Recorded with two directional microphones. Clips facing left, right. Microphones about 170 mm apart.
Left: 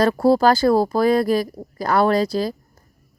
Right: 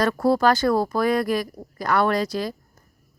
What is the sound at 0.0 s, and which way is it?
A woman's voice, 30° left (ahead or behind).